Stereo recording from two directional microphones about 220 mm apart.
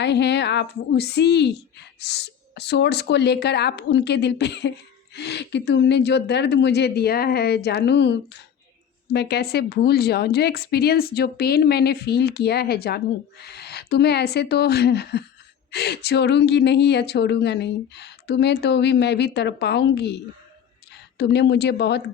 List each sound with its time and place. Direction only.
0.0 s a woman's voice: 50° left (ahead or behind)